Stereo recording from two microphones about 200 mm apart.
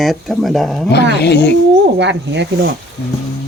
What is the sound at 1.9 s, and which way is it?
Speech, 60° right (ahead or behind).